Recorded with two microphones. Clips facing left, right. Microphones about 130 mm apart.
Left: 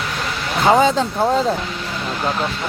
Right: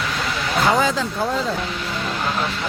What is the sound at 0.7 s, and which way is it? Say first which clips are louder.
Speech: left 9 dB; 25° left (ahead or behind).